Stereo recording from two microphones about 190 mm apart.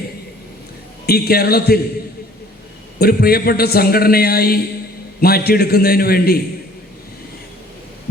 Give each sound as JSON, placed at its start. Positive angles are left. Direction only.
{"t": 1.0, "sound": "a man's voice", "side_deg": 55}
{"t": 3.0, "sound": "a man's voice", "side_deg": 55}